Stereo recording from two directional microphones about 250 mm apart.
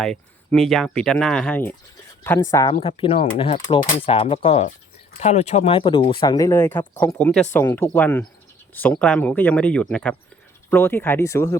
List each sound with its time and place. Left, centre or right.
0.0 s speech: centre